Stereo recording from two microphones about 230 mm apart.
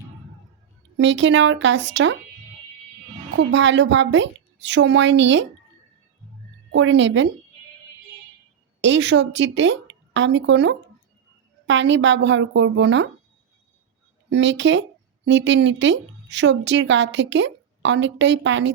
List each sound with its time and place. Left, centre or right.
0.9 s a woman's voice: right
3.3 s a woman's voice: right
6.7 s a woman's voice: right
8.8 s a woman's voice: right
14.3 s speech: right